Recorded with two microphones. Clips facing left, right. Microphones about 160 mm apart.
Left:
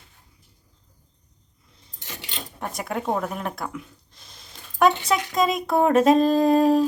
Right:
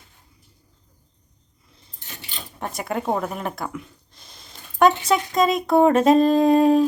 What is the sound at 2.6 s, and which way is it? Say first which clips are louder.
Speech: right 2 dB; centre (ahead or behind).